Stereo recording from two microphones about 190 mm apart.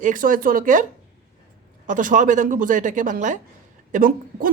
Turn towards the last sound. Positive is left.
turn(degrees=-45)  # may be behind; listen again after turning